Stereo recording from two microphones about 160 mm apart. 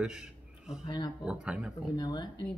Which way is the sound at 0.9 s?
25° left (ahead or behind).